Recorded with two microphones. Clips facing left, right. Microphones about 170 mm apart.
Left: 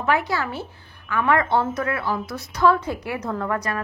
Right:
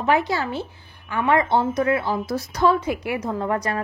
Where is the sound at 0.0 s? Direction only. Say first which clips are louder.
Right 2 dB; 20° right (ahead or behind).